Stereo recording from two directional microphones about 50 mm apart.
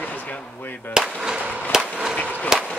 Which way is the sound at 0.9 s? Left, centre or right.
Centre.